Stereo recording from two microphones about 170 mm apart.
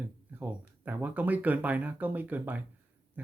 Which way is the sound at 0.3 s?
10° right (ahead or behind).